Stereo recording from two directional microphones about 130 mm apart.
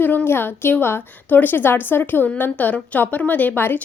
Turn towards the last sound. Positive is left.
turn(degrees=15)  # may be behind; listen again after turning